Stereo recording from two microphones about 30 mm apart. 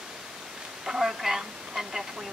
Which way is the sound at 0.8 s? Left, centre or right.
Centre.